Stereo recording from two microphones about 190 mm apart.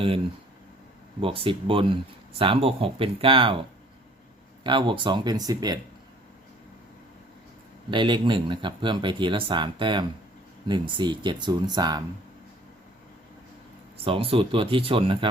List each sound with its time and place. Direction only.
1.2 s speech: 30° right (ahead or behind)
4.6 s speech: 25° right (ahead or behind)
7.9 s speech: 25° right (ahead or behind)
14.0 s speech: 30° right (ahead or behind)